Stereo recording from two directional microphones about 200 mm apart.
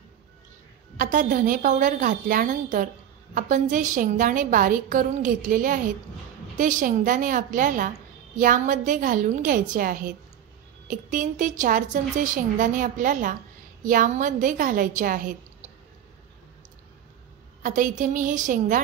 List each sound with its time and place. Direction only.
0.9 s a woman's voice: 40° right (ahead or behind)
17.6 s a woman's voice: 40° right (ahead or behind)